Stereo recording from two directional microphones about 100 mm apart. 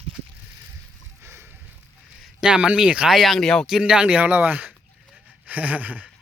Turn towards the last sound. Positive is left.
turn(degrees=-15)  # may be behind; listen again after turning